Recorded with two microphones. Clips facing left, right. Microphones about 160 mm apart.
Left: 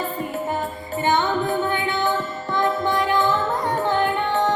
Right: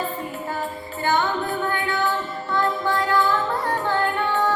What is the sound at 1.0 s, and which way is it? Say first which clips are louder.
Music: left 2 dB; 20° left (ahead or behind).